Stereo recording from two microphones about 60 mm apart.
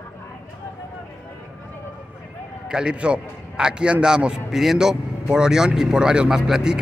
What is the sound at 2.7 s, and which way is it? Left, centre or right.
A man's voice, centre.